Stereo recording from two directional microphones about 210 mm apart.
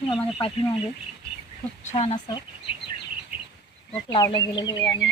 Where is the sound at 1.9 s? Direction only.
30° left (ahead or behind).